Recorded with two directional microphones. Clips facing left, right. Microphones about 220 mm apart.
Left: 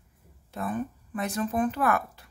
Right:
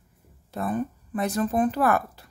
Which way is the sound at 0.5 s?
35° right (ahead or behind).